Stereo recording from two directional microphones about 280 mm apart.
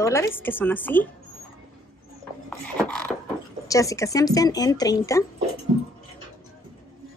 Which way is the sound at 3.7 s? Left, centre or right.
Centre.